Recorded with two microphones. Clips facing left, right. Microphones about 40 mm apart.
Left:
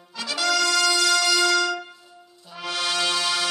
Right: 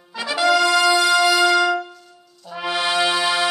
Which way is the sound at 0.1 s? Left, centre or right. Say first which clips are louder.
Right 7 dB; centre.